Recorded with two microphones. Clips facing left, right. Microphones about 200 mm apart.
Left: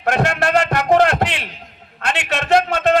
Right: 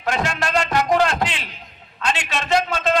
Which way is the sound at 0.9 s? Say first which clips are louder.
Left 4 dB; 60° left (ahead or behind).